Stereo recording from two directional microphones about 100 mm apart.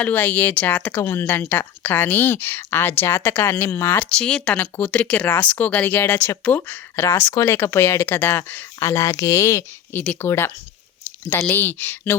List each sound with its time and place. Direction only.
0.0 s speech: 15° left (ahead or behind)
4.2 s speech: 10° left (ahead or behind)
8.8 s speech: 30° left (ahead or behind)
9.9 s speech: 15° left (ahead or behind)